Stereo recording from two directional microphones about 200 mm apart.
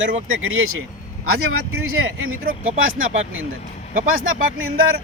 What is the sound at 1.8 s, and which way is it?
Speech, 90° right.